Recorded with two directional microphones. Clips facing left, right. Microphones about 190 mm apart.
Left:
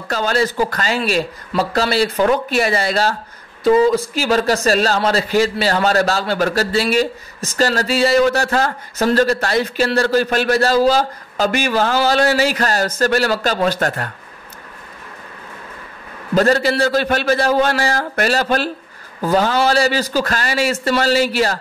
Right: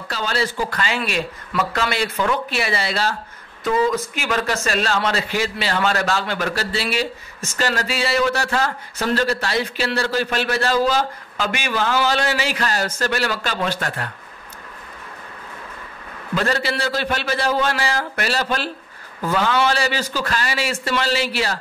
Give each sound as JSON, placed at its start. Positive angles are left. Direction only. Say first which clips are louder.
{"t": 0.1, "sound": "a man's voice", "louder": "left 6 dB", "side_deg": 45}
{"t": 3.6, "sound": "a man's voice", "louder": "left 7 dB", "side_deg": 35}
{"t": 16.3, "sound": "a man's voice", "louder": "left 7 dB", "side_deg": 40}